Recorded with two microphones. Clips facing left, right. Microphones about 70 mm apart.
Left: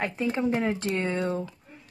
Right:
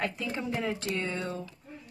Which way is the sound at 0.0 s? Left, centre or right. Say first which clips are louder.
Left 6 dB; left.